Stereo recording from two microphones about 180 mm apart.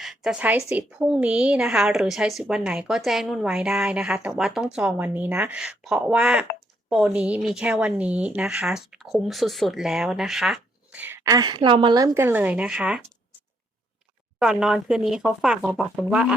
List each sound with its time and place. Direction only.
0.0 s a woman's voice: centre (ahead or behind)
14.3 s a woman's voice: 5° right (ahead or behind)